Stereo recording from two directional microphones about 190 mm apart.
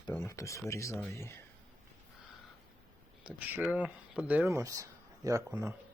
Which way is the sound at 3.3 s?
5° right (ahead or behind).